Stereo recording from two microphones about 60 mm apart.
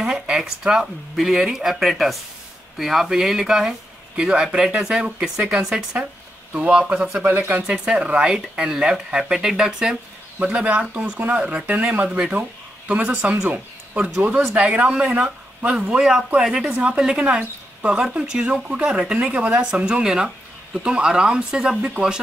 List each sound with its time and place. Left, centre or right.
0.0 s speech: centre
7.2 s speech: right
7.6 s speech: centre
11.1 s speech: right
11.3 s speech: right
14.5 s speech: right